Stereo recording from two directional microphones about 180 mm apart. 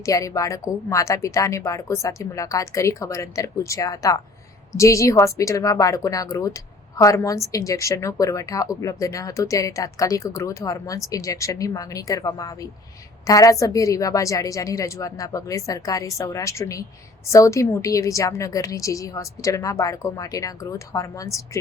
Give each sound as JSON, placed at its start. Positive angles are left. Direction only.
{"t": 0.0, "sound": "speech", "side_deg": 15}